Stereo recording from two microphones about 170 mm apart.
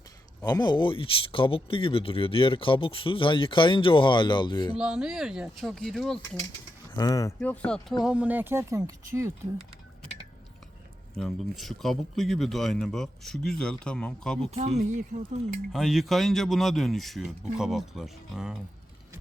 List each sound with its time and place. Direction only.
0.4 s speech: 25° left (ahead or behind)
4.8 s speech: 5° right (ahead or behind)
6.9 s speech: 20° left (ahead or behind)
7.3 s speech: 10° left (ahead or behind)
8.0 s speech: 10° right (ahead or behind)
11.2 s speech: centre (ahead or behind)
14.5 s speech: 40° right (ahead or behind)
15.7 s speech: centre (ahead or behind)